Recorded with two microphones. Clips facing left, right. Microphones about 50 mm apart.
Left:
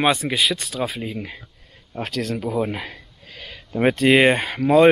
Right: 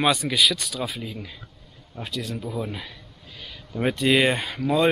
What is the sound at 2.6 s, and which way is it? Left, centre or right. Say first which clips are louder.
Speech: left 6 dB; left.